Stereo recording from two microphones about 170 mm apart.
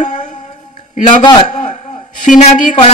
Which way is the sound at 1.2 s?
30° left (ahead or behind).